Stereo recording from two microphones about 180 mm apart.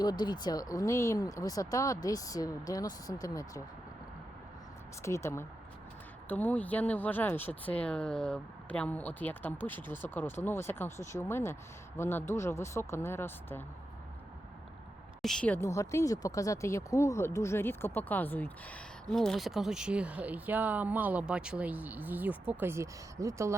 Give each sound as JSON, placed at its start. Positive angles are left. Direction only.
{"t": 0.0, "sound": "speech", "side_deg": 25}
{"t": 5.0, "sound": "speech", "side_deg": 15}
{"t": 15.2, "sound": "speech", "side_deg": 5}